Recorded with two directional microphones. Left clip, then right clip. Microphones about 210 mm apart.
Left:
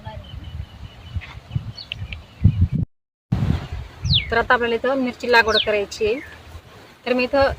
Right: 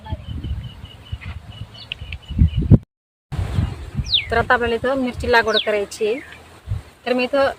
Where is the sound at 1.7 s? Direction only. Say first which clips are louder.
Right 1 dB; 25° right (ahead or behind).